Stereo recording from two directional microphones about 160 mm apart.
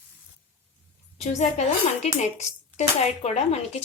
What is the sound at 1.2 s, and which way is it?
Speech, 45° left (ahead or behind).